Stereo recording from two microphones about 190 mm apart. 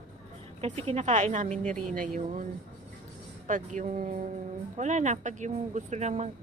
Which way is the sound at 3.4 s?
40° right (ahead or behind).